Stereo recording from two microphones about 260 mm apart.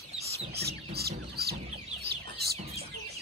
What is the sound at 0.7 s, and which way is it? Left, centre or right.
Chicken, right.